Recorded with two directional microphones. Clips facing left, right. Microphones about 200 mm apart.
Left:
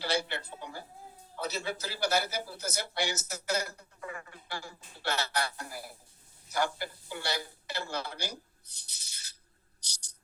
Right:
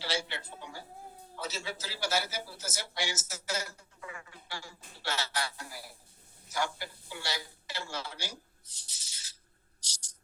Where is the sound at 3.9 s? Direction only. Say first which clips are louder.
Left 4 dB; 55° left (ahead or behind).